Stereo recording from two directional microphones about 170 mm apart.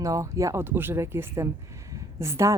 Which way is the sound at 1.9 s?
20° right (ahead or behind).